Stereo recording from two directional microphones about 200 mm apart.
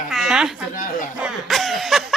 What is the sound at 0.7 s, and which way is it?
Speech, 40° left (ahead or behind).